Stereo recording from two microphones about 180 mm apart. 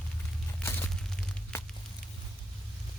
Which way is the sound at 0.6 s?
10° left (ahead or behind).